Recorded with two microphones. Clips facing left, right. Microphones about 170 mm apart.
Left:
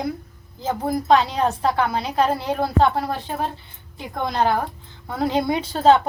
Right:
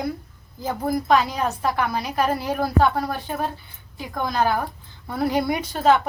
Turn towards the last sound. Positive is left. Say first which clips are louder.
# left 3 dB
turn(degrees=30)  # may be behind; listen again after turning